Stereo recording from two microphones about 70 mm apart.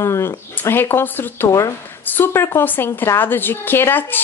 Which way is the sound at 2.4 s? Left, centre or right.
Left.